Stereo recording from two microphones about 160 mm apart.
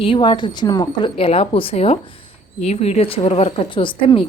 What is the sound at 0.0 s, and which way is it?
A woman's voice, 30° left (ahead or behind).